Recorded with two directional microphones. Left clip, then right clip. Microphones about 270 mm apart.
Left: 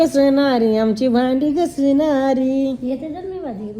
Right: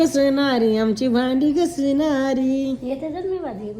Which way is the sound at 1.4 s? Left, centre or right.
Centre.